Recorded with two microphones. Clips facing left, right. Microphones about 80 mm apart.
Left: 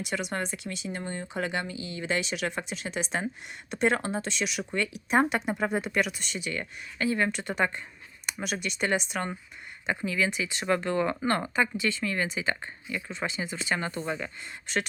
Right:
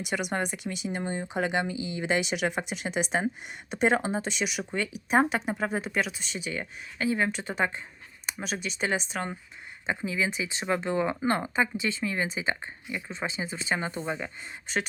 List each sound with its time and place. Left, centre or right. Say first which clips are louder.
0.0 s speech: right 2 dB; centre
6.5 s speech: even; centre
7.3 s speech: left 1 dB; centre
9.8 s speech: left 1 dB; centre
13.1 s speech: even; right
13.7 s speech: even; centre